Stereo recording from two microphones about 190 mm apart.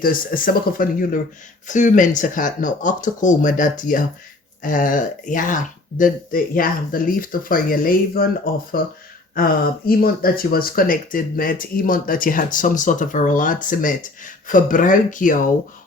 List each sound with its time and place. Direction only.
0.0 s speech: 50° left (ahead or behind)